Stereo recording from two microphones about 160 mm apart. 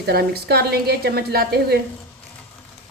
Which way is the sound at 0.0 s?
80° right.